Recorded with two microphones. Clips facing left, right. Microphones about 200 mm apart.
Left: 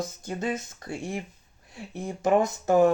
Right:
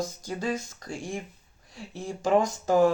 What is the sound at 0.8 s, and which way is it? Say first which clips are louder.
Speech: left 2 dB; 65° left (ahead or behind).